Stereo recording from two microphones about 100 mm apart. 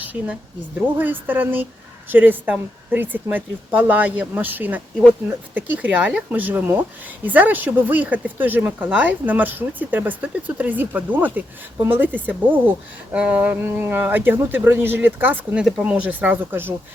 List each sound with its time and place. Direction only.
0.0 s a woman's voice: 15° right (ahead or behind)